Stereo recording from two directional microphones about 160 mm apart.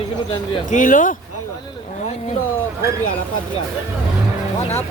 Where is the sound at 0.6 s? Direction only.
55° left (ahead or behind).